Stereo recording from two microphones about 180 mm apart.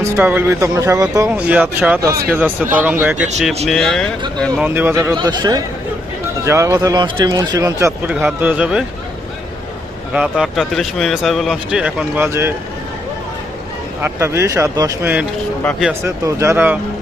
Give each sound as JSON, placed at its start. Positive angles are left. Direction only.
{"t": 0.0, "sound": "speech", "side_deg": -10}
{"t": 1.4, "sound": "speech", "side_deg": -10}
{"t": 3.7, "sound": "speech", "side_deg": 0}
{"t": 4.6, "sound": "speech", "side_deg": -10}
{"t": 5.1, "sound": "a man's voice", "side_deg": -25}
{"t": 10.1, "sound": "speech", "side_deg": -5}
{"t": 14.0, "sound": "speech", "side_deg": -15}